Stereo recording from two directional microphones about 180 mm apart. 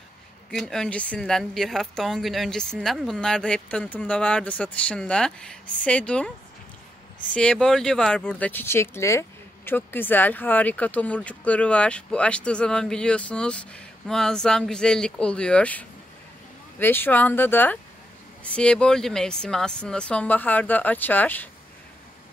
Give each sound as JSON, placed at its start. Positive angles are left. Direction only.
{"t": 0.5, "sound": "speech", "side_deg": 0}
{"t": 7.3, "sound": "speech", "side_deg": 5}